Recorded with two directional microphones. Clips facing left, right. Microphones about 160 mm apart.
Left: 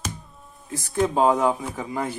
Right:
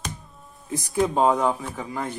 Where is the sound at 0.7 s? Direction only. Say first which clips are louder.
Right 3 dB; 20° right (ahead or behind).